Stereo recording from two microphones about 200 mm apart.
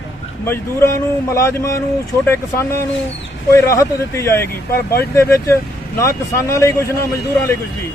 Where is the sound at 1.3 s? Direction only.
15° left (ahead or behind).